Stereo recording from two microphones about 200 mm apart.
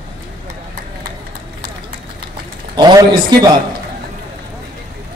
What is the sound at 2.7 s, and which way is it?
Speech, 20° right (ahead or behind).